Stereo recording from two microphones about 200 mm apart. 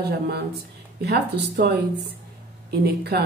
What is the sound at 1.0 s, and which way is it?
Speech, 55° right (ahead or behind).